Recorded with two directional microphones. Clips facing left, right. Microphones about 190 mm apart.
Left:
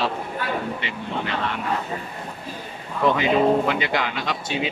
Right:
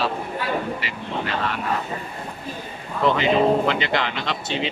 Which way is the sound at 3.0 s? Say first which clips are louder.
Even; 10° left (ahead or behind).